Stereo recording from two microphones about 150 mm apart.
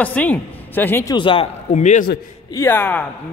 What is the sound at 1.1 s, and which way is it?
Speech, 35° left (ahead or behind).